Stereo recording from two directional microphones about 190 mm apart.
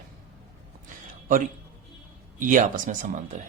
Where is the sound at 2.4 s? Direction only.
45° right (ahead or behind).